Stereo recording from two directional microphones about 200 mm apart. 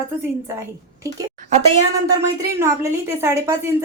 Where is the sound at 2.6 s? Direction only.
15° right (ahead or behind).